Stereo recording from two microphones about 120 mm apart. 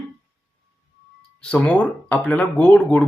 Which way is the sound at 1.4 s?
10° left (ahead or behind).